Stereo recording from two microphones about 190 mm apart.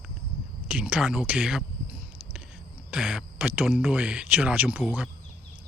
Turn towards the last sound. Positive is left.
turn(degrees=-5)  # may be behind; listen again after turning